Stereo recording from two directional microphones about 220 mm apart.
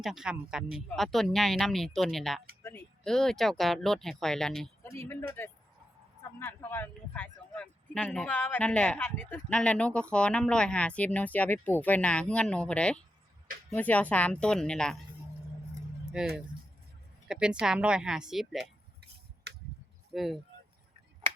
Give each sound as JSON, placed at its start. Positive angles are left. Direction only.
{"t": 0.0, "sound": "speech", "side_deg": 0}
{"t": 16.2, "sound": "speech", "side_deg": -5}
{"t": 19.5, "sound": "a sound", "side_deg": -50}
{"t": 20.1, "sound": "speech", "side_deg": 0}